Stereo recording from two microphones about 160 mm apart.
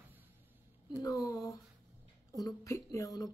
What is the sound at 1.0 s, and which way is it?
Speech, 20° left (ahead or behind).